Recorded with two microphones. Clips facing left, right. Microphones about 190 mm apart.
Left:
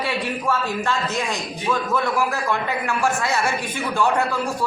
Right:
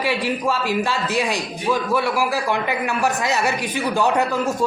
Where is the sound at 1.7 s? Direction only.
10° right (ahead or behind).